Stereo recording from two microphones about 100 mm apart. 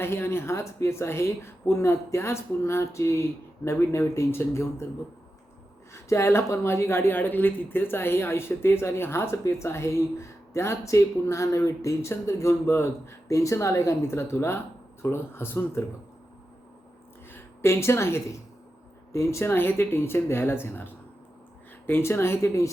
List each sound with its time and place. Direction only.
0.0 s speech: 25° left (ahead or behind)
5.9 s speech: 30° left (ahead or behind)
17.3 s a woman's voice: 25° left (ahead or behind)